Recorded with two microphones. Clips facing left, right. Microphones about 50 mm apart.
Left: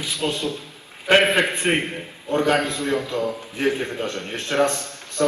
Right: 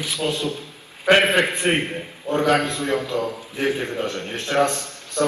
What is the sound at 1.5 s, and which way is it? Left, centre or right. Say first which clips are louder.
Speech: right 1 dB; left.